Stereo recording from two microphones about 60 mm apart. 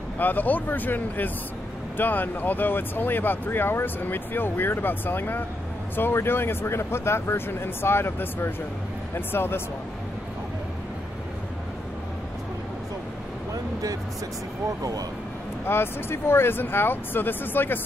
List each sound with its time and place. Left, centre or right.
0.2 s speech: left
15.6 s speech: left